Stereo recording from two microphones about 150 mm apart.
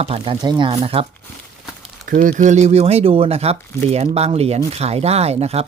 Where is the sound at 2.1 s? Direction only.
65° right (ahead or behind).